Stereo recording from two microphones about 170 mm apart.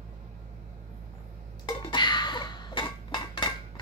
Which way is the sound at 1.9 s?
25° left (ahead or behind).